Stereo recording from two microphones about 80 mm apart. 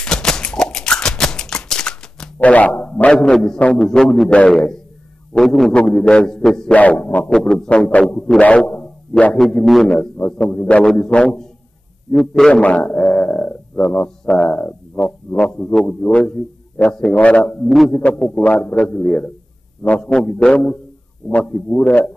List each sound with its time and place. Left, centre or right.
0.0 s a sound: centre
3.1 s a man's voice: centre
6.8 s a man's voice: centre
12.6 s dog: centre
15.7 s a man's voice: centre
17.6 s a man's voice: centre
17.9 s a man's voice: centre